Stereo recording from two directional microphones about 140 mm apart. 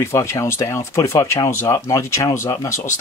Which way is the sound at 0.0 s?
20° left (ahead or behind).